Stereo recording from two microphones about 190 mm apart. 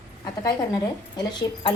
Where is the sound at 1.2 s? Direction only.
25° left (ahead or behind).